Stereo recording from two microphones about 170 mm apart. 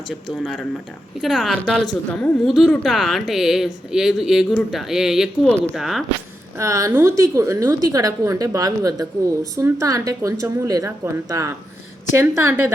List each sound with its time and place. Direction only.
0.1 s a woman's voice: centre (ahead or behind)
6.6 s a woman's voice: 20° right (ahead or behind)